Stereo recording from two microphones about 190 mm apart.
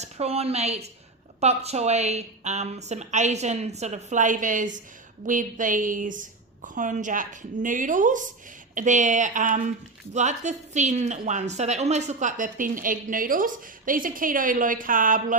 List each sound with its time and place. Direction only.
0.0 s a woman's voice: 35° right (ahead or behind)